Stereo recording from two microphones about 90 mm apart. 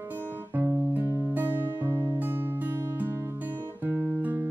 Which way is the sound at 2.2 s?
25° right (ahead or behind).